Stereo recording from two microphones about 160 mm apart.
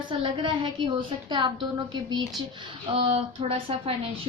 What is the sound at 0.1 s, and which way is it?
A woman's voice, 30° right (ahead or behind).